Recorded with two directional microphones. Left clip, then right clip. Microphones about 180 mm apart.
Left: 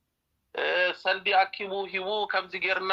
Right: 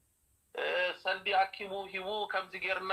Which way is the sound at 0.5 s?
50° left (ahead or behind).